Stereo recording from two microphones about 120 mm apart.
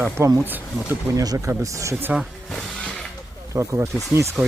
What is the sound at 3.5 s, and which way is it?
Speech, 25° right (ahead or behind).